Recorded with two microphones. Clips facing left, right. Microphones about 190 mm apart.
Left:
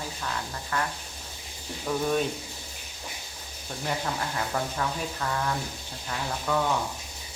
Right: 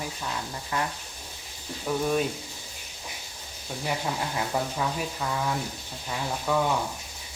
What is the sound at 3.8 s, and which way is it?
Speech, 10° right (ahead or behind).